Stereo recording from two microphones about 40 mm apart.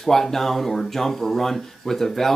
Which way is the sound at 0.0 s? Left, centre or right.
Centre.